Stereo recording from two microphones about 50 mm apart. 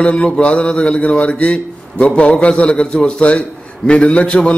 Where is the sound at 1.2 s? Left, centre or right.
Left.